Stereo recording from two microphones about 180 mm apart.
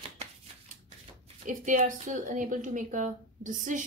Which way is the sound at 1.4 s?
45° right (ahead or behind).